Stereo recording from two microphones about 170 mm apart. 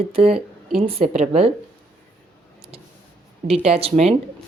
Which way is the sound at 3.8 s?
35° right (ahead or behind).